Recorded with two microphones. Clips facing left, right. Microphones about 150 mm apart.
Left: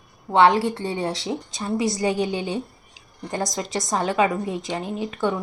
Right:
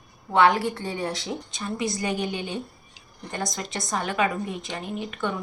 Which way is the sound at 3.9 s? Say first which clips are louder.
Left 5 dB; 20° left (ahead or behind).